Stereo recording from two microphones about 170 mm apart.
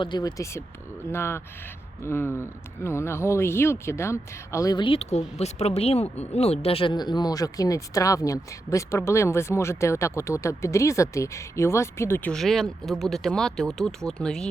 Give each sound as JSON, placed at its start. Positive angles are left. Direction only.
{"t": 0.0, "sound": "speech", "side_deg": 25}